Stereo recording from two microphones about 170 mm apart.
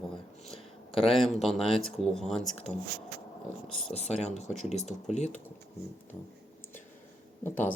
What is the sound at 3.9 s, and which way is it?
Speech, 40° left (ahead or behind).